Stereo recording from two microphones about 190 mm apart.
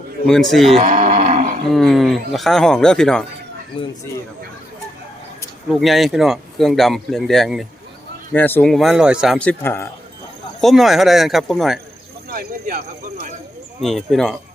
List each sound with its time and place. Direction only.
0.3 s speech: centre (ahead or behind)
0.9 s livestock: 40° right (ahead or behind)
1.7 s speech: centre (ahead or behind)
5.8 s speech: centre (ahead or behind)
8.3 s speech: 10° left (ahead or behind)
10.6 s speech: centre (ahead or behind)
12.3 s cricket: 50° right (ahead or behind)
13.8 s speech: centre (ahead or behind)